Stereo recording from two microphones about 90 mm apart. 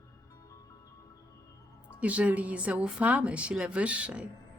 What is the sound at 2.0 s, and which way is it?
A woman's voice, 15° right (ahead or behind).